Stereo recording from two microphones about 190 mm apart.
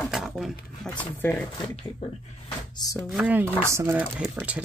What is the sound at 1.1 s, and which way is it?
Speech, 10° left (ahead or behind).